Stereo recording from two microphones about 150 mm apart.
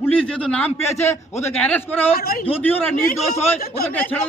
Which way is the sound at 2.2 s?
90° left.